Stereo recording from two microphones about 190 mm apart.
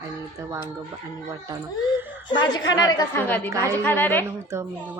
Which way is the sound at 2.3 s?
25° left (ahead or behind).